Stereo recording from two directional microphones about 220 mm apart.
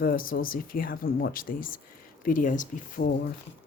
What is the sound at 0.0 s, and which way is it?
A woman's voice, 40° left (ahead or behind).